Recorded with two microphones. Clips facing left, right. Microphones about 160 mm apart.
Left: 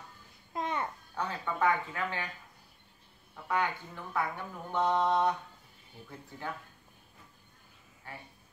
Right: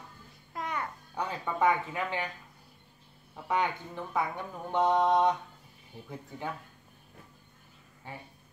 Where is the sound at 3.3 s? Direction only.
20° right (ahead or behind).